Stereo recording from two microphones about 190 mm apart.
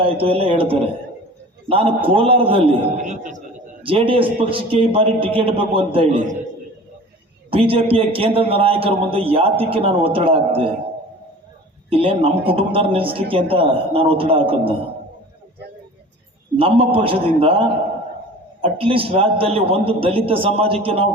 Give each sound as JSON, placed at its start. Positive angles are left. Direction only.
{"t": 0.0, "sound": "a man's voice", "side_deg": -30}
{"t": 3.0, "sound": "a man's voice", "side_deg": -40}
{"t": 3.8, "sound": "a man's voice", "side_deg": -30}
{"t": 7.5, "sound": "a man's voice", "side_deg": -30}
{"t": 11.9, "sound": "a man's voice", "side_deg": -30}
{"t": 16.6, "sound": "a man's voice", "side_deg": -30}
{"t": 18.6, "sound": "a man's voice", "side_deg": -30}